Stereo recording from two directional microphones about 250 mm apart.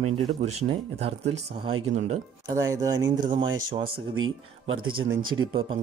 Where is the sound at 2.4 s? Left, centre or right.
Centre.